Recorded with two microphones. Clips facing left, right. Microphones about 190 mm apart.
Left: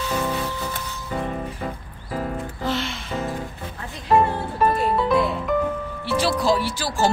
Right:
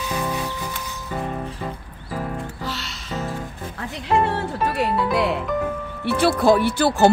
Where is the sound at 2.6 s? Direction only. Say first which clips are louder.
Left 6 dB; 50° left (ahead or behind).